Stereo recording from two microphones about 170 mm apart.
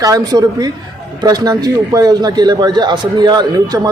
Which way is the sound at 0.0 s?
20° right (ahead or behind).